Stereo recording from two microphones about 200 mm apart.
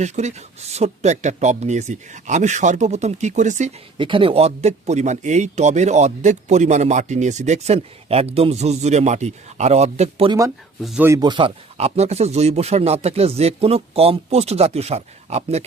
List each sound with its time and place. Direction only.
0.0 s speech: 35° right (ahead or behind)
3.9 s speech: 25° right (ahead or behind)
10.8 s speech: 5° right (ahead or behind)
11.1 s speech: 20° right (ahead or behind)